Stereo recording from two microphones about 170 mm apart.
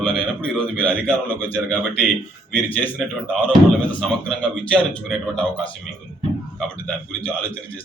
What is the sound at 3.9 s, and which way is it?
Speech, 5° left (ahead or behind).